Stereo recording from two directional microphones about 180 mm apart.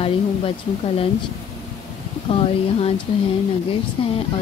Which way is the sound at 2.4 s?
30° left (ahead or behind).